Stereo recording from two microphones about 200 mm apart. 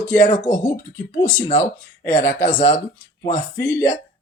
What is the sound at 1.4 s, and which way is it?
Speech, 35° left (ahead or behind).